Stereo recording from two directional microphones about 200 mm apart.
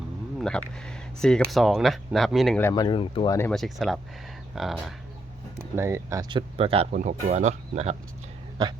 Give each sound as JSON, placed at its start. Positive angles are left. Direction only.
{"t": 0.3, "sound": "speech", "side_deg": 5}
{"t": 2.6, "sound": "speech", "side_deg": 10}
{"t": 2.8, "sound": "speech", "side_deg": 25}
{"t": 3.5, "sound": "speech", "side_deg": 0}
{"t": 5.5, "sound": "speech", "side_deg": -15}